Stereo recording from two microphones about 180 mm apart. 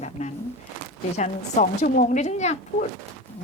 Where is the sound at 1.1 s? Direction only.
40° left (ahead or behind).